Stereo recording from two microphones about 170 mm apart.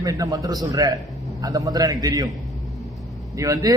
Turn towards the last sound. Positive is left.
turn(degrees=-20)  # may be behind; listen again after turning